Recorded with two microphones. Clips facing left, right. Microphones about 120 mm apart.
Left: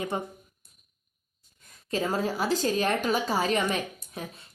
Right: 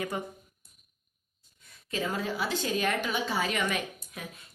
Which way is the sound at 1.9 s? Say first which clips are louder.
Left 4 dB; 35° left (ahead or behind).